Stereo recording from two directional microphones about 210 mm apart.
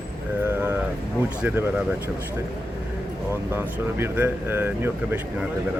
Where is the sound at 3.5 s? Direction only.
10° right (ahead or behind).